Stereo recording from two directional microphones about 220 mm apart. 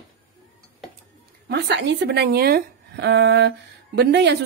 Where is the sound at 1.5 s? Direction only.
50° right (ahead or behind).